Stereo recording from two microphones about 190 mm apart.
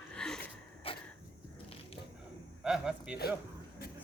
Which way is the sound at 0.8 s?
30° left (ahead or behind).